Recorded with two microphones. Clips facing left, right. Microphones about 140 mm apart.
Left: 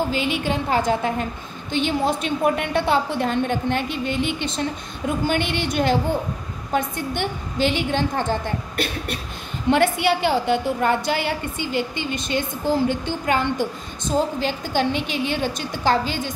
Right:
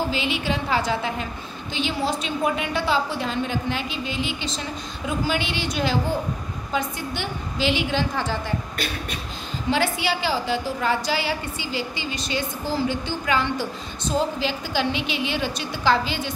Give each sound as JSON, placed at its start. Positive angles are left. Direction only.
{"t": 0.1, "sound": "a woman's voice", "side_deg": 50}